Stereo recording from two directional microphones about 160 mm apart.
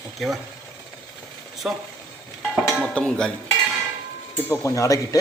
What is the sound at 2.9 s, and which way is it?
Speech, 5° left (ahead or behind).